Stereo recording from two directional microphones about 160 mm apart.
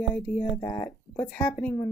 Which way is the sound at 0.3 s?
50° left (ahead or behind).